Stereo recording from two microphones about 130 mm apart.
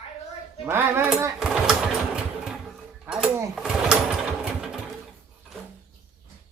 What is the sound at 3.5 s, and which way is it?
Sewing machine, 5° right (ahead or behind).